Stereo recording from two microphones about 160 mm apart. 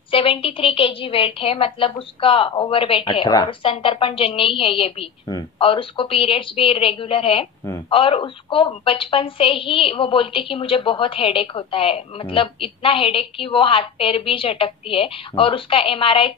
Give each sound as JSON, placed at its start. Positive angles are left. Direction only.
{"t": 0.1, "sound": "a woman's voice", "side_deg": 35}